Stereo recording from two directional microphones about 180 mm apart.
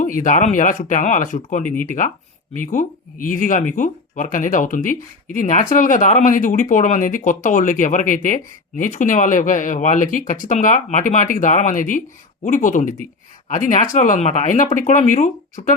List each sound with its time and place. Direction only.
0.0 s speech: 45° left (ahead or behind)